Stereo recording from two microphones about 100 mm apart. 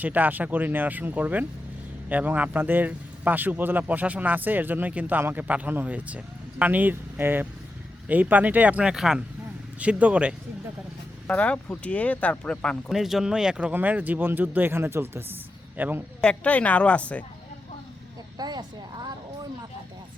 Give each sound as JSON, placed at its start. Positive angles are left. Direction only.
{"t": 0.0, "sound": "speech", "side_deg": -15}
{"t": 11.3, "sound": "speech", "side_deg": 15}
{"t": 12.9, "sound": "speech", "side_deg": -5}
{"t": 16.2, "sound": "speech", "side_deg": 10}
{"t": 18.3, "sound": "a sound", "side_deg": -45}